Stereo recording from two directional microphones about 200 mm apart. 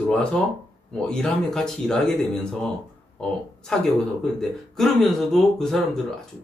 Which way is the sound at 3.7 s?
5° left (ahead or behind).